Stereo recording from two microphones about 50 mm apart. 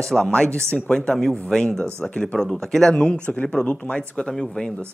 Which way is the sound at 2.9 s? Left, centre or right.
Centre.